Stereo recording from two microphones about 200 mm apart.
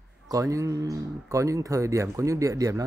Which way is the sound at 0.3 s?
15° right (ahead or behind).